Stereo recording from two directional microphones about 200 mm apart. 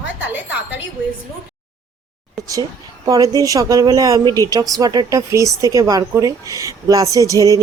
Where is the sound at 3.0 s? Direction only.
15° right (ahead or behind).